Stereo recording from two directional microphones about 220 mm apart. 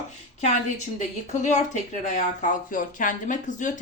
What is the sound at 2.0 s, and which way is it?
A woman's voice, 35° left (ahead or behind).